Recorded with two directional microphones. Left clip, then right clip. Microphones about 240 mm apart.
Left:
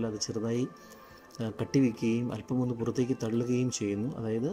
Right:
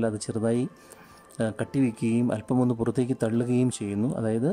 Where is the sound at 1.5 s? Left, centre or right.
Centre.